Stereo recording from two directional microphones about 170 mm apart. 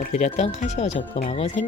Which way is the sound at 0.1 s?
40° left (ahead or behind).